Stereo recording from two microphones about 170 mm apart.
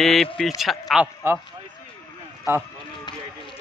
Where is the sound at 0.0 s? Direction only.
Centre (ahead or behind).